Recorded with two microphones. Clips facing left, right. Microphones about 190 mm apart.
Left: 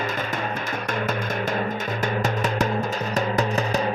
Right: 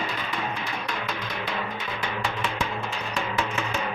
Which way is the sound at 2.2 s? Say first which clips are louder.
Left 5 dB; 40° left (ahead or behind).